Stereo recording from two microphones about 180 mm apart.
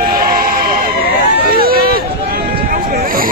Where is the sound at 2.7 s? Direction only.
50° right (ahead or behind).